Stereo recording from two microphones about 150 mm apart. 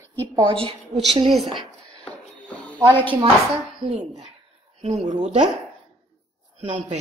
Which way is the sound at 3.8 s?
35° right (ahead or behind).